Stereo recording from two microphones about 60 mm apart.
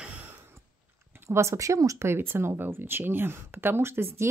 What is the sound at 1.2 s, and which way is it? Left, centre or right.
Speech, right.